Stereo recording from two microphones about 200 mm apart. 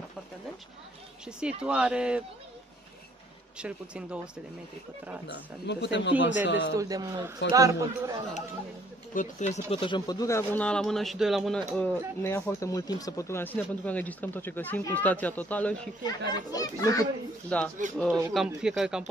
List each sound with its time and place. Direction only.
1.2 s speech: 5° right (ahead or behind)
3.5 s speech: 5° right (ahead or behind)
5.2 s speech: 60° left (ahead or behind)
6.7 s a man's voice: 15° right (ahead or behind)
9.1 s speech: 40° left (ahead or behind); by 15.9 s 5° left (ahead or behind)
16.5 s speech: 20° left (ahead or behind)
17.5 s speech: 5° left (ahead or behind)